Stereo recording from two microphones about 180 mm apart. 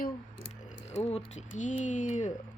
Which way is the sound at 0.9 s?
40° left (ahead or behind).